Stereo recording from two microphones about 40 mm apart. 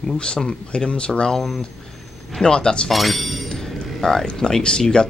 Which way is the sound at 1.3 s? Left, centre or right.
Centre.